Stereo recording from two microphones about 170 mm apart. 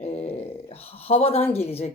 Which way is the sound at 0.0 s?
35° left (ahead or behind).